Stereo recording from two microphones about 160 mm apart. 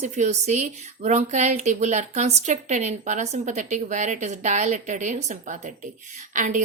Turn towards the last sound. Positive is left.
turn(degrees=-50)  # may be behind; listen again after turning